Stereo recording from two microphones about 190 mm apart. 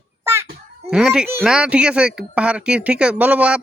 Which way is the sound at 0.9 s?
5° right (ahead or behind).